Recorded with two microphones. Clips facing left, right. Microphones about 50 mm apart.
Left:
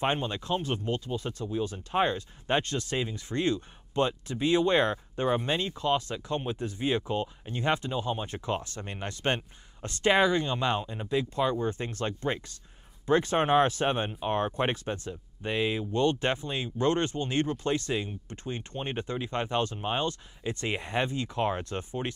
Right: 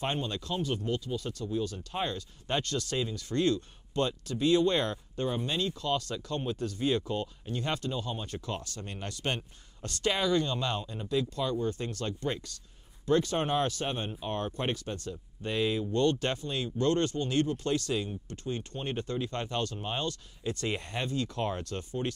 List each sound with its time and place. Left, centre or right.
0.0 s speech: left